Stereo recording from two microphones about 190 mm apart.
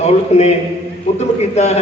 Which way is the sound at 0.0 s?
35° left (ahead or behind).